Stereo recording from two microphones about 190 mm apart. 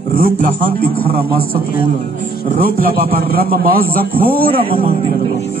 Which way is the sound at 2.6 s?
50° right (ahead or behind).